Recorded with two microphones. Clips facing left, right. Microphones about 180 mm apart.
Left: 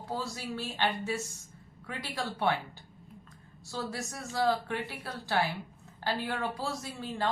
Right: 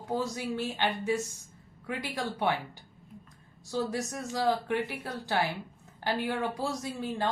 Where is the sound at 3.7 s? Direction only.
20° right (ahead or behind).